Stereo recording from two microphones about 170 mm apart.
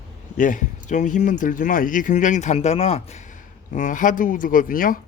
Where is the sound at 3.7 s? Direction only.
50° left (ahead or behind).